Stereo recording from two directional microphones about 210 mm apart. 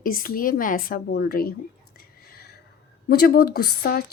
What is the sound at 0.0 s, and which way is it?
A woman's voice, 45° left (ahead or behind).